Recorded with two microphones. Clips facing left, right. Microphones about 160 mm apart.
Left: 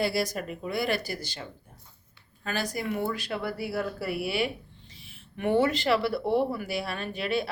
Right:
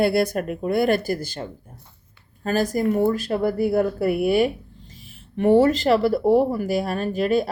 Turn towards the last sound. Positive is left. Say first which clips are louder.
# right 9 dB
turn(degrees=-45)  # may be behind; listen again after turning